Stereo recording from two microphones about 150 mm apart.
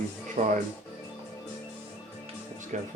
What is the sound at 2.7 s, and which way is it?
Speech, 55° right (ahead or behind).